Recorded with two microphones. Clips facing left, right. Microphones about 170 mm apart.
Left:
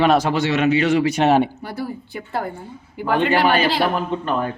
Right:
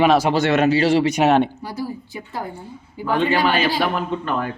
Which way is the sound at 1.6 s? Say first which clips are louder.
Even; 60° left (ahead or behind).